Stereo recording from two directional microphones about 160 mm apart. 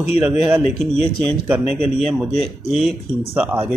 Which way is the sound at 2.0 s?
Centre (ahead or behind).